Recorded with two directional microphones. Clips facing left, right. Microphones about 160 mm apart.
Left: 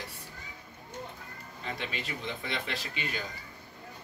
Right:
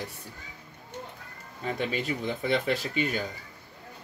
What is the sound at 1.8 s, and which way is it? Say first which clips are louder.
Speech: right 10 dB; 45° right (ahead or behind).